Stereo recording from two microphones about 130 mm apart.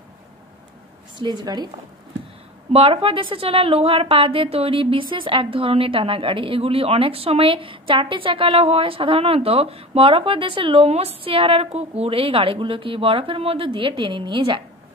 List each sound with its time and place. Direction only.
1.1 s a woman's voice: 35° right (ahead or behind)
2.7 s a woman's voice: 45° right (ahead or behind)